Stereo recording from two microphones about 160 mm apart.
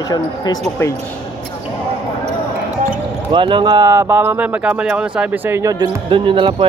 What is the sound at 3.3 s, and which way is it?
Speech, 30° right (ahead or behind).